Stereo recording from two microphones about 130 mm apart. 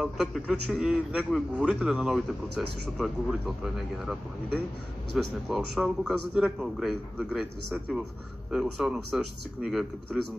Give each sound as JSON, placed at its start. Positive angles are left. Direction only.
{"t": 0.0, "sound": "a man's voice", "side_deg": -5}
{"t": 8.5, "sound": "a man's voice", "side_deg": -5}